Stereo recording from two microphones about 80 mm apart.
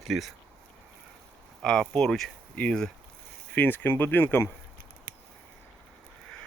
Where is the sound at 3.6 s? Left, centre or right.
Left.